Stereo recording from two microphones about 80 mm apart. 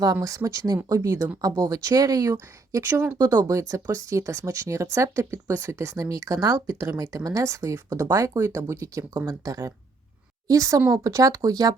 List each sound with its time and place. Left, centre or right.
0.0 s speech: right
1.4 s speech: right
2.8 s speech: right
3.2 s speech: right